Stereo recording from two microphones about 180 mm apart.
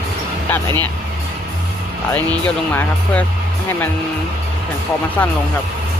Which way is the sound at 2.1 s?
10° left (ahead or behind).